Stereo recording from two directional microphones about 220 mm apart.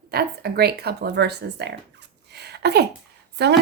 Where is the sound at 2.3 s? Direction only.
50° right (ahead or behind).